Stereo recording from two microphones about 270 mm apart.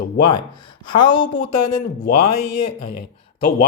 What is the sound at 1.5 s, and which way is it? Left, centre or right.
Speech, left.